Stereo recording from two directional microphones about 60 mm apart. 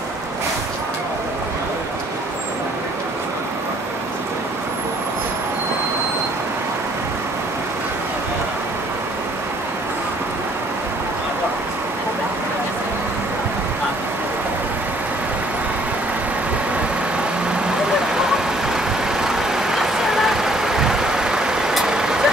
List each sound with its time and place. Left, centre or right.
19.2 s vehicle: centre